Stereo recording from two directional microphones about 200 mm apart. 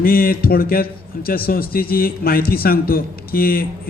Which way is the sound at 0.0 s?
45° left (ahead or behind).